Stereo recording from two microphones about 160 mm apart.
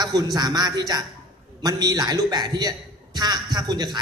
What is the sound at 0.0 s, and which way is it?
A man's voice, 25° right (ahead or behind).